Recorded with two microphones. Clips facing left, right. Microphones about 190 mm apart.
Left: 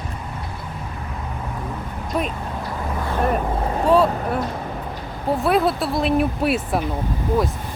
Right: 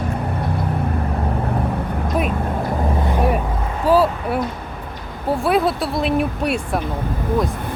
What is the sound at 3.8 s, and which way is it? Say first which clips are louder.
Speech: right 2 dB; 5° right (ahead or behind).